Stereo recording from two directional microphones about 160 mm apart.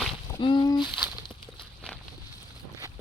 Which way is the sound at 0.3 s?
30° left (ahead or behind).